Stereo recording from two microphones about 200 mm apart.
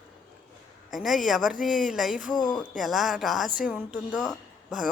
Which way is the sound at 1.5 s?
40° left (ahead or behind).